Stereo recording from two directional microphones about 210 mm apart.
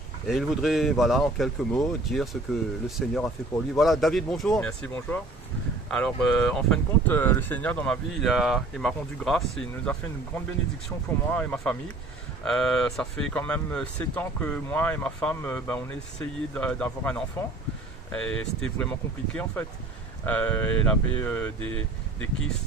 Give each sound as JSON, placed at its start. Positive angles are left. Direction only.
{"t": 0.3, "sound": "speech", "side_deg": 0}